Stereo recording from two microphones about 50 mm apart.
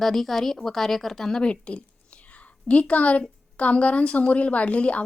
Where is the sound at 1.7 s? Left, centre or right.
Left.